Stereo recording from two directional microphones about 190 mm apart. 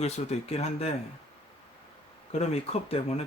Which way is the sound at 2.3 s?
35° left (ahead or behind).